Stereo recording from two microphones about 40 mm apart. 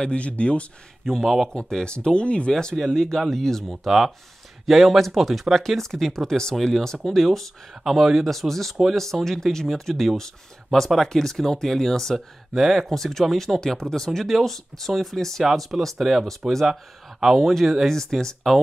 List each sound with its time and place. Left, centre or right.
0.0 s speech: left
1.0 s speech: centre; by 2.5 s left
2.7 s speech: centre
3.8 s speech: centre
12.5 s speech: centre